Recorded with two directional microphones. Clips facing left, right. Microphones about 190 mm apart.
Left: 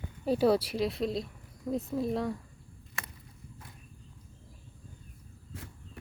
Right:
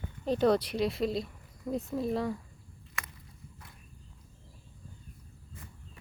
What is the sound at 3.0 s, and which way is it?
Walk, 30° left (ahead or behind).